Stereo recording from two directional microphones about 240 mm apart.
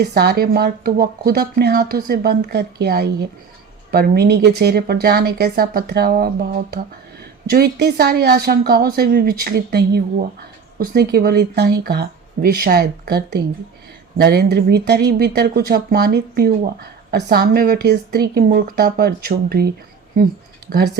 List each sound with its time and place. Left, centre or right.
0.0 s speech: right